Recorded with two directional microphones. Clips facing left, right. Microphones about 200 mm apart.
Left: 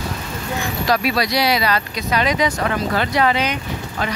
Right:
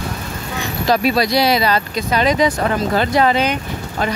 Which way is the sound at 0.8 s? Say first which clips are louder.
Right 4 dB; 25° right (ahead or behind).